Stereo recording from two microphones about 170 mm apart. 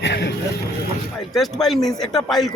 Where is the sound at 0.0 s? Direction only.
90° left.